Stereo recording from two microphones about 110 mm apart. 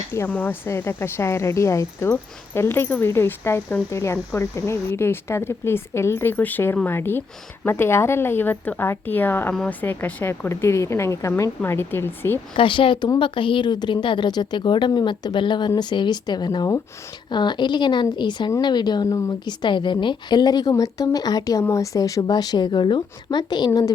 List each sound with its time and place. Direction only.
0.1 s speech: 20° left (ahead or behind)
12.5 s speech: 50° left (ahead or behind)
19.0 s speech: 30° left (ahead or behind)
19.5 s speech: 45° left (ahead or behind)